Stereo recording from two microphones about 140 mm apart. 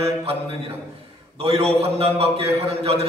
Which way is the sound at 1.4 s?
45° right (ahead or behind).